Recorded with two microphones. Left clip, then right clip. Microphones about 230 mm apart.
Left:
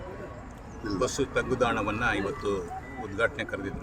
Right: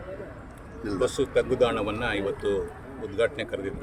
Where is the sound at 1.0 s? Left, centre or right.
Centre.